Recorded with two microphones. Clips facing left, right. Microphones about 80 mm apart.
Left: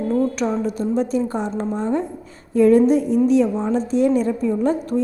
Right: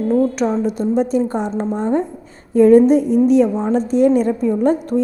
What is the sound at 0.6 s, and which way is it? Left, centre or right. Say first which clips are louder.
A woman's voice: right 4 dB; right.